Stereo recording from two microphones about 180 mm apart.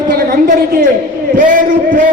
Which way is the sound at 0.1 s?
50° right (ahead or behind).